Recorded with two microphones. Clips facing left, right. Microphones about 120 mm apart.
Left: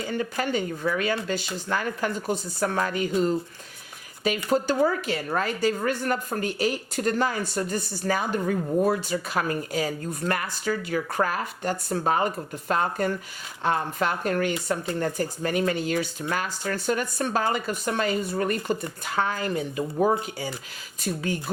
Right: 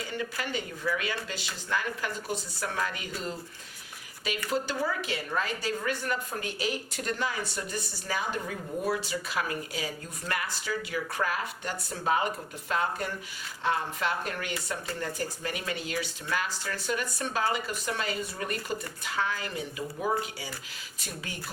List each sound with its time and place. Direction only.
0.2 s a woman's voice: 45° left (ahead or behind)
4.4 s a woman's voice: 45° left (ahead or behind)